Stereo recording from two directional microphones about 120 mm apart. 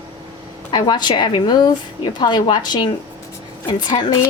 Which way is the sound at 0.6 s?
40° left (ahead or behind).